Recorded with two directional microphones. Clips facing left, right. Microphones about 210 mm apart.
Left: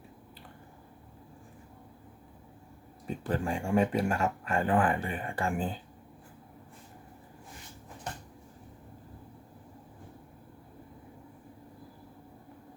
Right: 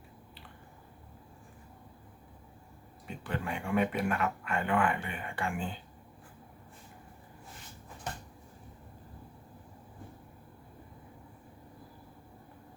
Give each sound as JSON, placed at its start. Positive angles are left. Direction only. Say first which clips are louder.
{"t": 3.1, "sound": "speech", "louder": "left 5 dB", "side_deg": 35}